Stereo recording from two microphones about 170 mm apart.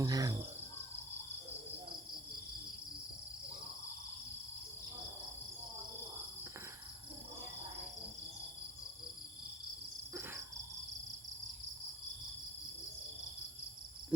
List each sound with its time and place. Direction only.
0.0 s cricket: 20° right (ahead or behind)